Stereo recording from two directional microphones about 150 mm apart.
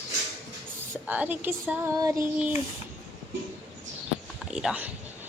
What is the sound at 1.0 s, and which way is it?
Speech, 10° right (ahead or behind).